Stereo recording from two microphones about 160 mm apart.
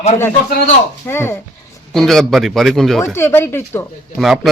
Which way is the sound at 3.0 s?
15° left (ahead or behind).